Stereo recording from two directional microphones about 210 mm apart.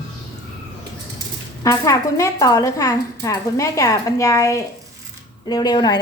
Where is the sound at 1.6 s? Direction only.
15° left (ahead or behind).